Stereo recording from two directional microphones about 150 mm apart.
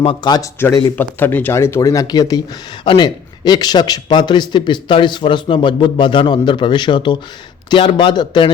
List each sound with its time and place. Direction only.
0.0 s a man's voice: 35° left (ahead or behind)
0.9 s a man's voice: 15° left (ahead or behind); by 8.4 s 30° left (ahead or behind)